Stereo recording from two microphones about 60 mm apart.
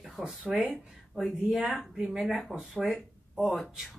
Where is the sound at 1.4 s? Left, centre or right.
Right.